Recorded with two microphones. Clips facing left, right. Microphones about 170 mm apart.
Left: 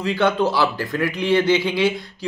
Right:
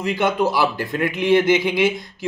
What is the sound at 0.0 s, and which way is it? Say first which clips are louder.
A man's voice: left 1 dB; 15° right (ahead or behind).